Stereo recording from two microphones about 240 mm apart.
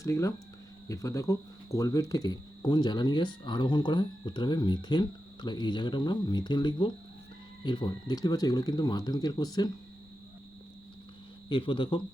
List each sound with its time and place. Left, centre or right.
0.0 s speech: centre
11.4 s speech: centre